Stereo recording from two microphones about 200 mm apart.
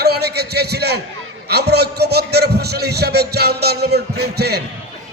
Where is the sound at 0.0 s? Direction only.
55° right (ahead or behind).